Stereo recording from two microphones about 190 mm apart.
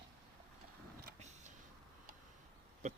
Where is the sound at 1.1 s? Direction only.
35° right (ahead or behind).